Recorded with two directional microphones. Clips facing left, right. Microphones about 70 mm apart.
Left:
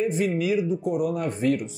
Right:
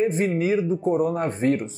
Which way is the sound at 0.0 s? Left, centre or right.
Right.